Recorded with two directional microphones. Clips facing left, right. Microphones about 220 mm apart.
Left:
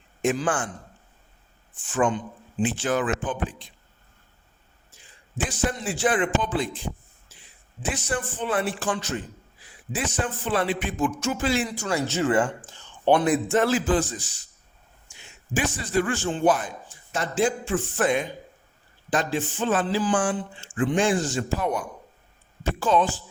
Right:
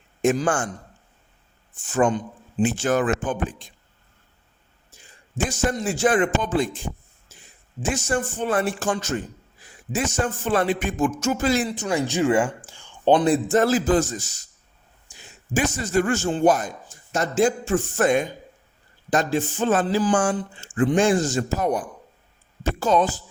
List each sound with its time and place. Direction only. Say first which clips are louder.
0.2 s a man's voice: right 4 dB; 45° right (ahead or behind)
1.7 s speech: right 3 dB; 40° right (ahead or behind)
4.9 s a man's voice: right 4 dB; 45° right (ahead or behind)
11.7 s speech: right 3 dB; 20° right (ahead or behind)
13.2 s a man's voice: right 3 dB; 35° right (ahead or behind)